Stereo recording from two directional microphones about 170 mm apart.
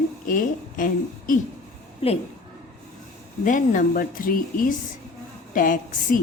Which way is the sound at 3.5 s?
50° left (ahead or behind).